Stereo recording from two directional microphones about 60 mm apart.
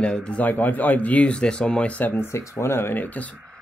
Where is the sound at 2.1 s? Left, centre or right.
Left.